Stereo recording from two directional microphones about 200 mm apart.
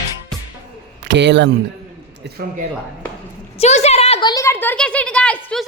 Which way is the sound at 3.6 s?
35° left (ahead or behind).